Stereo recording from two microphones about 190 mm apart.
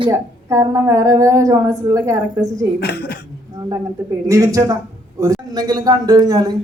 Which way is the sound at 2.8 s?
55° left (ahead or behind).